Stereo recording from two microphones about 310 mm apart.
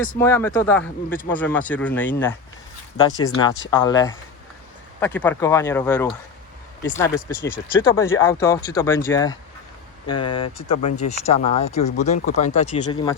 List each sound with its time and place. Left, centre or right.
0.2 s speech: centre